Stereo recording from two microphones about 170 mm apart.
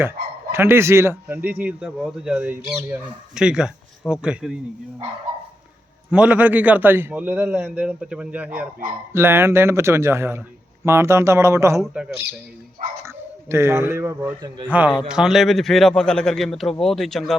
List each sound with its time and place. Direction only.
0.5 s a man's voice: 15° right (ahead or behind)
6.1 s a man's voice: 5° right (ahead or behind)
13.1 s a man's voice: 15° right (ahead or behind); by 17.3 s centre (ahead or behind)